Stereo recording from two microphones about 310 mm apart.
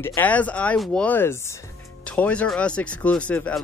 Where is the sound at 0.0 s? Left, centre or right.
Centre.